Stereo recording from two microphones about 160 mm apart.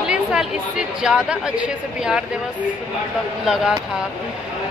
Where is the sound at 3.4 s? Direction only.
5° right (ahead or behind).